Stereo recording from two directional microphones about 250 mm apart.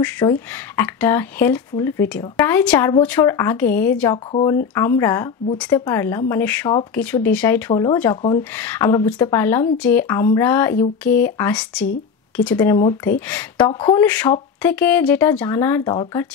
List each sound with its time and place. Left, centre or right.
0.0 s speech: centre
4.3 s speech: left
4.7 s speech: centre
14.0 s speech: centre